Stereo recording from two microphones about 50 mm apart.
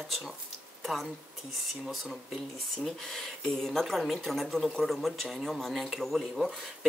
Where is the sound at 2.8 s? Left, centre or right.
Centre.